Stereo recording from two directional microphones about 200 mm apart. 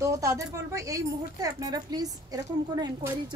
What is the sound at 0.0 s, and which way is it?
Speech, 15° right (ahead or behind).